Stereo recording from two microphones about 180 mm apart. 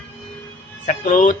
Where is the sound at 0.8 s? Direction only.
45° left (ahead or behind).